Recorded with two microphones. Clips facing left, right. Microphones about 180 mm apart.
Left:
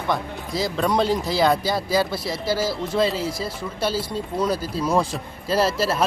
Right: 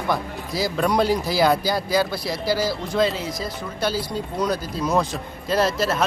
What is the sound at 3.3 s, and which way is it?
Speech, 30° left (ahead or behind).